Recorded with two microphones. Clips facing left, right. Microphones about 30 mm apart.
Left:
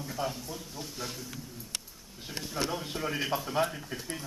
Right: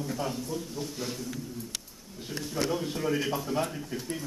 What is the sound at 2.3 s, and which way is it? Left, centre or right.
Speech, centre.